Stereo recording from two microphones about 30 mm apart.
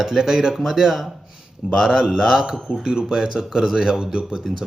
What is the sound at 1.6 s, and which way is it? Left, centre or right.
Speech, right.